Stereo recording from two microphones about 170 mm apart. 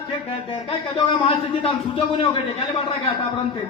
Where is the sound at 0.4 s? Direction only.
30° left (ahead or behind).